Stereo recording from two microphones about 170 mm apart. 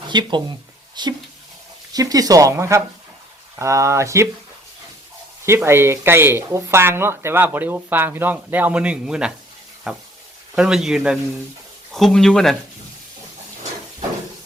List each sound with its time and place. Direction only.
0.1 s speech: 25° right (ahead or behind)
5.5 s speech: 15° right (ahead or behind); by 12.5 s centre (ahead or behind)